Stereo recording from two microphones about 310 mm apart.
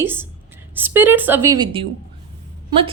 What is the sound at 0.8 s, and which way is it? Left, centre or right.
A woman's voice, centre.